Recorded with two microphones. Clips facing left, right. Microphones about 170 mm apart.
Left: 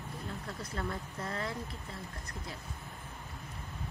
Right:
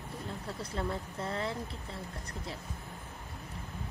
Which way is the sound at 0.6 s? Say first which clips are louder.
Right 4 dB; 30° right (ahead or behind).